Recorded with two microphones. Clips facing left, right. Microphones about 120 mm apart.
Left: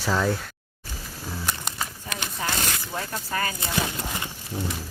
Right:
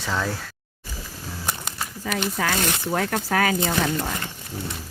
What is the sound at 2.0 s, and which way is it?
Speech, 70° right (ahead or behind).